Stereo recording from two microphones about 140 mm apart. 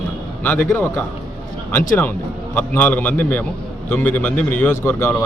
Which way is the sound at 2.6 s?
10° left (ahead or behind).